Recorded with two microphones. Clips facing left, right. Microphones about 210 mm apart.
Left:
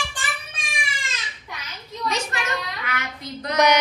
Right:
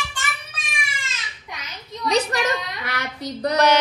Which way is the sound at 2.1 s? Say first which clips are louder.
Right 7 dB; 35° right (ahead or behind).